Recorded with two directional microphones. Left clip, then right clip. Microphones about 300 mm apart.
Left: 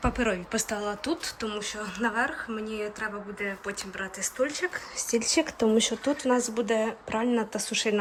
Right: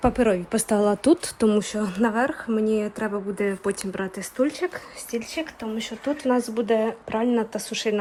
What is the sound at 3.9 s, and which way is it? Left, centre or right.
Speech, centre.